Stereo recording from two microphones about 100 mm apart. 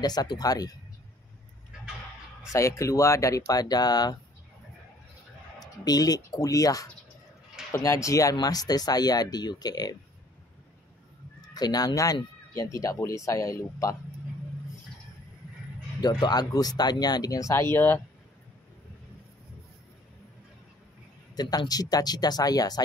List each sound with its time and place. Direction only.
0.0 s speech: 40° left (ahead or behind)
2.5 s speech: 30° left (ahead or behind)
5.6 s speech: 40° left (ahead or behind)
11.5 s speech: 40° left (ahead or behind)
16.0 s speech: 45° left (ahead or behind); by 18.0 s 20° left (ahead or behind)
21.4 s speech: 40° left (ahead or behind)